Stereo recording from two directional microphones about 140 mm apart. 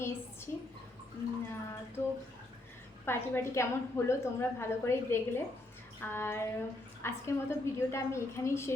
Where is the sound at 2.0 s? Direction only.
20° left (ahead or behind).